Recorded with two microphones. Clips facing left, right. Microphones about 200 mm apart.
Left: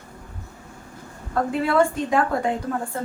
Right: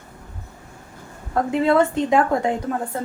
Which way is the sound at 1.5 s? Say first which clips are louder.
Right 3 dB; 20° right (ahead or behind).